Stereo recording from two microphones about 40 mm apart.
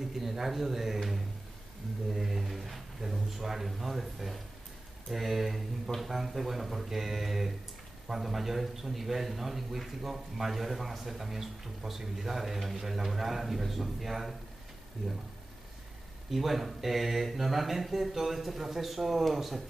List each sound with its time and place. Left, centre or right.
0.1 s a man's voice: centre
16.3 s a man's voice: centre